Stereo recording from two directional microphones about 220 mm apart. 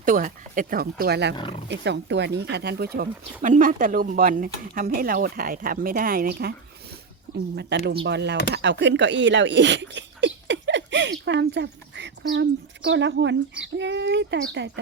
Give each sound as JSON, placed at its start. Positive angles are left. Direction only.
{"t": 0.0, "sound": "speech", "side_deg": -40}
{"t": 1.4, "sound": "speech", "side_deg": 25}
{"t": 1.6, "sound": "speech", "side_deg": -50}